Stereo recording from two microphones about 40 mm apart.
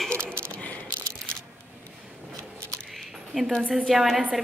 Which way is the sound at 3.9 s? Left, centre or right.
Centre.